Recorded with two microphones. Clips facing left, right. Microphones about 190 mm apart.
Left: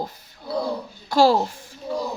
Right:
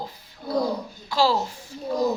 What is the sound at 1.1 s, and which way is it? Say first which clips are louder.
Speech: left 5 dB; 50° left (ahead or behind).